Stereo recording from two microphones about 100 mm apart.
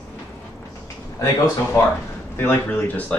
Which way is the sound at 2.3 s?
20° left (ahead or behind).